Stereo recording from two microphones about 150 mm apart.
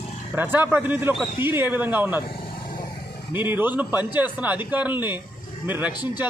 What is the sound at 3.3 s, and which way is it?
A man's voice, 15° right (ahead or behind).